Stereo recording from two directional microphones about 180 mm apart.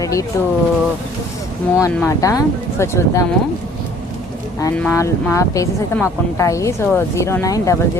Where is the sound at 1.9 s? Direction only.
10° left (ahead or behind).